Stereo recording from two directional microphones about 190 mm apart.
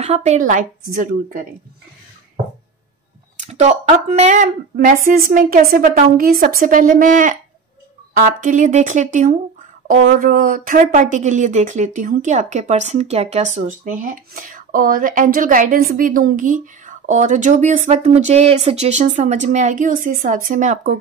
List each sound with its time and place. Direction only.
0.0 s speech: 35° right (ahead or behind)
3.3 s speech: 35° right (ahead or behind)